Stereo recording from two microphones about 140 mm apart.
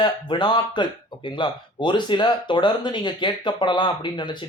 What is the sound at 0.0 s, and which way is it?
Speech, 35° left (ahead or behind).